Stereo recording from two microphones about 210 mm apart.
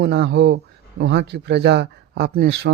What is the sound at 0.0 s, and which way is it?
Speech, 50° right (ahead or behind).